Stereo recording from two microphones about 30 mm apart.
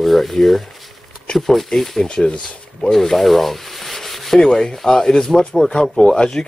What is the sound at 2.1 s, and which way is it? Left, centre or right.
Speech, left.